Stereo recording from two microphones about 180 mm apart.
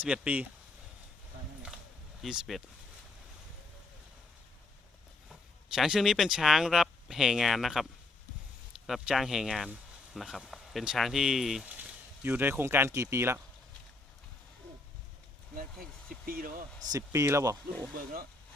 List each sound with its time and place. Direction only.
0.0 s speech: 10° right (ahead or behind)
2.2 s speech: centre (ahead or behind)
5.7 s speech: centre (ahead or behind)
16.2 s speech: 55° right (ahead or behind)
16.9 s speech: 15° right (ahead or behind)